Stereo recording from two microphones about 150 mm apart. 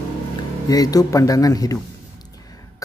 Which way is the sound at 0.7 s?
25° left (ahead or behind).